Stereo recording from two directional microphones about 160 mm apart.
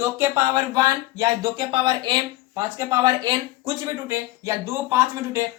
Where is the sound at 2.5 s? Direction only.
15° right (ahead or behind).